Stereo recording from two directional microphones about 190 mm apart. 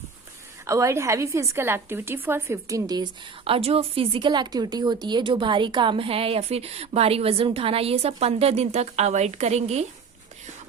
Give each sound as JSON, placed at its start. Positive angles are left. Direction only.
{"t": 0.7, "sound": "a woman's voice", "side_deg": -15}